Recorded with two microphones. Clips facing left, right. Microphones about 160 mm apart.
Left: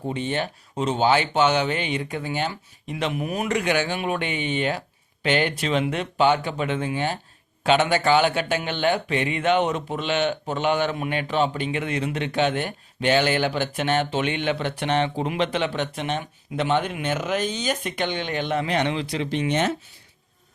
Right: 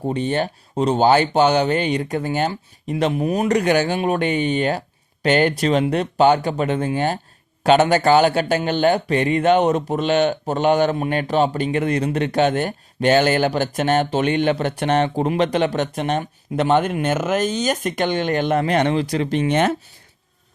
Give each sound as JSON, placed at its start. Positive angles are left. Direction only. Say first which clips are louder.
{"t": 0.0, "sound": "speech", "louder": "right 5 dB", "side_deg": -40}